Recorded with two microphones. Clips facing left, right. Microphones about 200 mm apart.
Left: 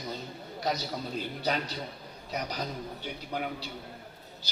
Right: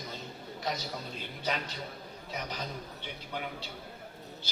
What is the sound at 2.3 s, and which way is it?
Speech, 40° left (ahead or behind).